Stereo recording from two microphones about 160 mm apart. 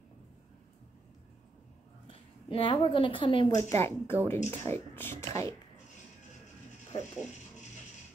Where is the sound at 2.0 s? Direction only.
35° left (ahead or behind).